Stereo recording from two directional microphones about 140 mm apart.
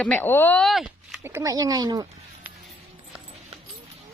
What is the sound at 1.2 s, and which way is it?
Speech, 20° right (ahead or behind).